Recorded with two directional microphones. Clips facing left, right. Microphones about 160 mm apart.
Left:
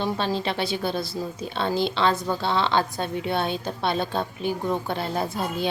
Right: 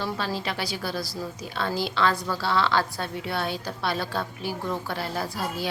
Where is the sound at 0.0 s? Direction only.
20° left (ahead or behind).